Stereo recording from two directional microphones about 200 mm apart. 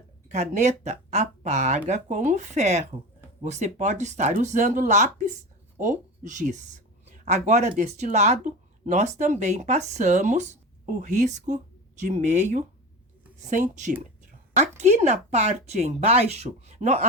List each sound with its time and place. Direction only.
0.3 s speech: 35° right (ahead or behind)